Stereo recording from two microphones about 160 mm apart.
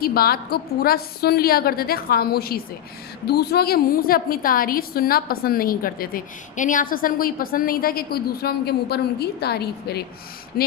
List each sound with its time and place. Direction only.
0.0 s a woman's voice: 70° left (ahead or behind)
3.2 s a woman's voice: 90° left